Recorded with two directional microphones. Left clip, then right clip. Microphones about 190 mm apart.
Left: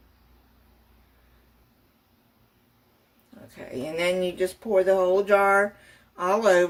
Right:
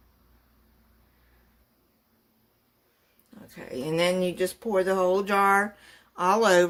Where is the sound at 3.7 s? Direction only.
50° right (ahead or behind).